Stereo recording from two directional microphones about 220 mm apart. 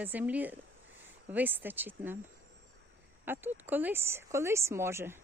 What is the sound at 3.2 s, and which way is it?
Speech, 10° right (ahead or behind).